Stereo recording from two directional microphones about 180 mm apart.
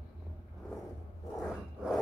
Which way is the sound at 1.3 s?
Centre (ahead or behind).